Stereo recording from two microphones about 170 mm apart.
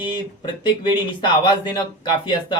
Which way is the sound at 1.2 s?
30° left (ahead or behind).